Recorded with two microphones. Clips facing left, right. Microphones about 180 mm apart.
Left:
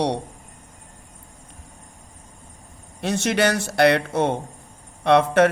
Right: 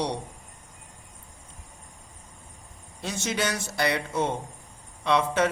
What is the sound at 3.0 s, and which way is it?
A man's voice, 65° left (ahead or behind).